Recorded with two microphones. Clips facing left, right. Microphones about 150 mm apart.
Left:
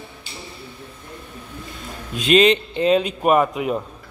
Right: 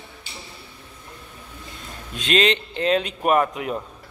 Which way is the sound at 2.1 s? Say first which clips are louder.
Left 6 dB; 5° left (ahead or behind).